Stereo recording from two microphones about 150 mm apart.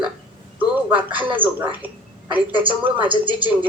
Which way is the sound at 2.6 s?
10° right (ahead or behind).